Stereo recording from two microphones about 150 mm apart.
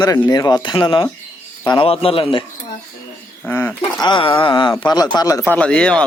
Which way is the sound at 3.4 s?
10° left (ahead or behind).